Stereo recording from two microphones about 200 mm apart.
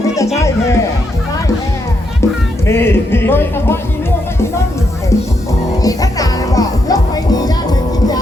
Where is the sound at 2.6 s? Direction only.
10° left (ahead or behind).